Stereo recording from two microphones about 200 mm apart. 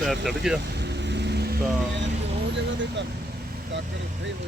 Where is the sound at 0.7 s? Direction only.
60° right (ahead or behind).